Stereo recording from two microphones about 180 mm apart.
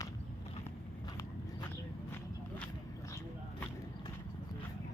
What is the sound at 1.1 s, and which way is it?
Biting, 20° left (ahead or behind).